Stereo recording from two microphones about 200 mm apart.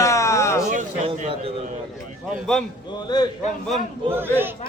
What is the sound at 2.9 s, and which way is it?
Speech, 20° left (ahead or behind).